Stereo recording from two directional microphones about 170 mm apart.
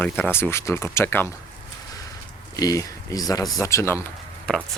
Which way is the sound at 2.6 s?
20° left (ahead or behind).